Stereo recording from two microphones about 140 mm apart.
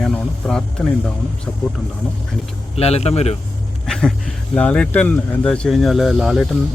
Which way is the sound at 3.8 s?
5° left (ahead or behind).